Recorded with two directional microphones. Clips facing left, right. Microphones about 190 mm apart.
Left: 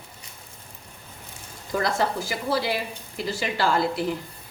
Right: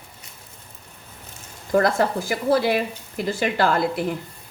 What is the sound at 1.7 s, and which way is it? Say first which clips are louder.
A woman's voice: right 5 dB; 50° right (ahead or behind).